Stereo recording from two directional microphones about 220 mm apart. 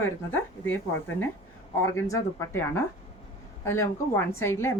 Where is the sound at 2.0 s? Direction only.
15° left (ahead or behind).